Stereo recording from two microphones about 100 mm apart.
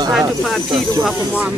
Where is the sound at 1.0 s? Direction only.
15° right (ahead or behind).